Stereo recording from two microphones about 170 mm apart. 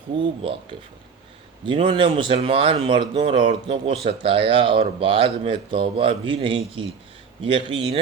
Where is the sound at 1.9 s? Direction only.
30° right (ahead or behind).